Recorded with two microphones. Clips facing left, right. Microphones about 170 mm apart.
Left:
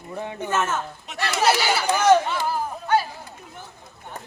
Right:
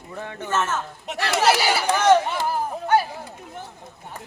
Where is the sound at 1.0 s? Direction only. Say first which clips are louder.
Right 3 dB; 75° right (ahead or behind).